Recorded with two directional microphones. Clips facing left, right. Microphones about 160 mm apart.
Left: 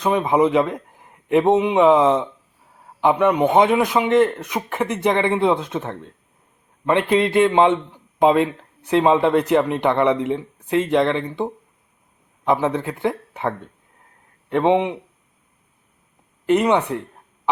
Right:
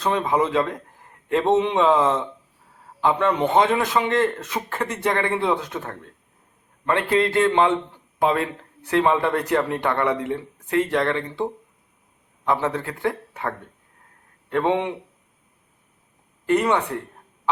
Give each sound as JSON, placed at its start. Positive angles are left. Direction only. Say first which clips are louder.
{"t": 0.0, "sound": "a man's voice", "louder": "left 4 dB", "side_deg": 20}
{"t": 12.5, "sound": "a man's voice", "louder": "left 3 dB", "side_deg": 20}
{"t": 14.5, "sound": "a man's voice", "louder": "left 4 dB", "side_deg": 20}
{"t": 16.5, "sound": "a man's voice", "louder": "left 3 dB", "side_deg": 20}